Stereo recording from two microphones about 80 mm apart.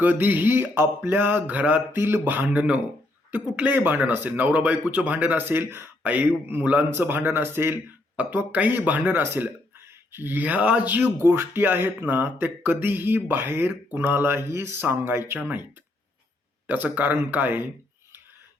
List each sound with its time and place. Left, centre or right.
0.0 s speech: right
2.0 s speech: right
16.6 s speech: right